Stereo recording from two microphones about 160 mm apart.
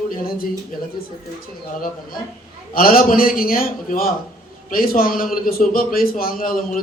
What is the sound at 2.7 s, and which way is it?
Speech, 65° left (ahead or behind).